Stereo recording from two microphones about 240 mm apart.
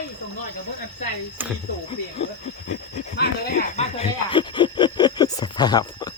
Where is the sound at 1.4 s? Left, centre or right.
Centre.